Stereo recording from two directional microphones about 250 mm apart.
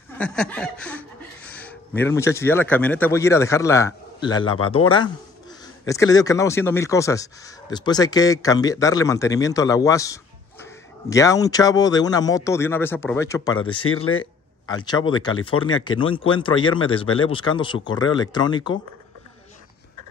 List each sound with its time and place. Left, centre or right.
0.2 s speech: centre